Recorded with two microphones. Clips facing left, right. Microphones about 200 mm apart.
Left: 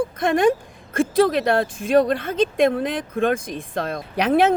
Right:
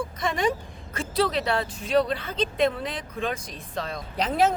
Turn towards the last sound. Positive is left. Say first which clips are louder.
# left 6 dB
turn(degrees=65)  # may be behind; listen again after turning